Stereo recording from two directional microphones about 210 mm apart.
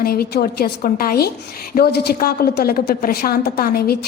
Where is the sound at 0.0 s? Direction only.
45° left (ahead or behind).